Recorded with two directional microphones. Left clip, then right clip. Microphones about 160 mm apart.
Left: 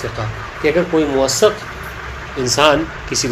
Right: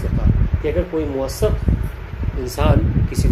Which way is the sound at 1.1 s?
15° left (ahead or behind).